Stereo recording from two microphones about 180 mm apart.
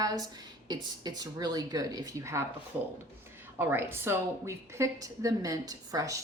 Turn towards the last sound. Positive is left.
turn(degrees=-20)  # may be behind; listen again after turning